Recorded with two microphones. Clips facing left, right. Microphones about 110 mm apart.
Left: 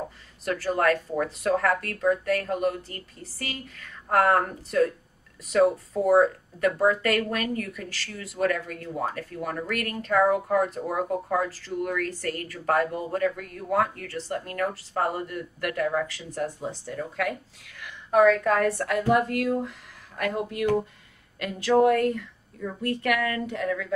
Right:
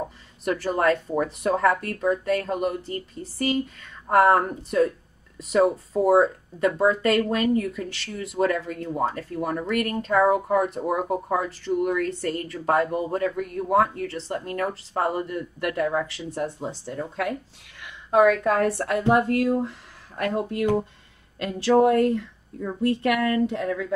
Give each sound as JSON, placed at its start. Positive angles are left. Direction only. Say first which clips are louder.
{"t": 0.5, "sound": "speech", "louder": "right 2 dB", "side_deg": -25}